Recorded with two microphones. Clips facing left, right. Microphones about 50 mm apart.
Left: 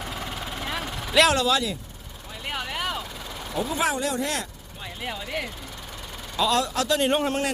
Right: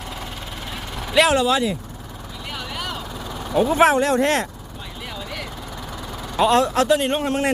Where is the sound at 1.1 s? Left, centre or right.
Centre.